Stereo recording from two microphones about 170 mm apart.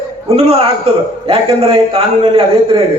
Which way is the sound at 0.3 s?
35° right (ahead or behind).